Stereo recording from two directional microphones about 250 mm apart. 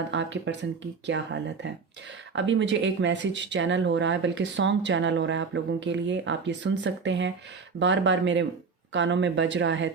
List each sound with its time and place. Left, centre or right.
0.1 s speech: right